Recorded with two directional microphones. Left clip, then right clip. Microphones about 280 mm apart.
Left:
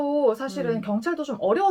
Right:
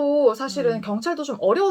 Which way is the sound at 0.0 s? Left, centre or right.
Centre.